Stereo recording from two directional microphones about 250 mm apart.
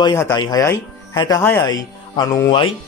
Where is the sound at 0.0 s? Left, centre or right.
Centre.